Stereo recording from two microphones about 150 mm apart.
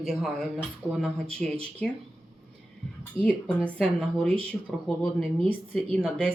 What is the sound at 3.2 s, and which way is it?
Speech, 35° right (ahead or behind).